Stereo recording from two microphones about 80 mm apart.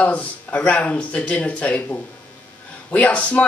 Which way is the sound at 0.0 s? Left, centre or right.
Centre.